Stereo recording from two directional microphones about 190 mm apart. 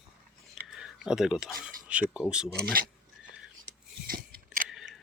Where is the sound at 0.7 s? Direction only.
Centre (ahead or behind).